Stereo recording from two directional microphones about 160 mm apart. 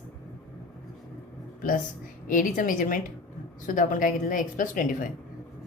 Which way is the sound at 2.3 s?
60° left (ahead or behind).